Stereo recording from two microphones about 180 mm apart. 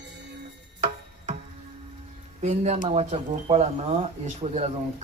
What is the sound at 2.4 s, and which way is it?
Speech, 40° right (ahead or behind).